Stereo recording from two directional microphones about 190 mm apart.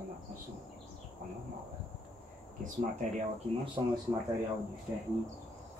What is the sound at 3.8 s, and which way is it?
Speech, 25° right (ahead or behind).